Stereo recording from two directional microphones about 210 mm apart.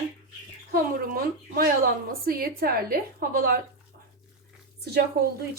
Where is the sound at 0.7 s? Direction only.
45° right (ahead or behind).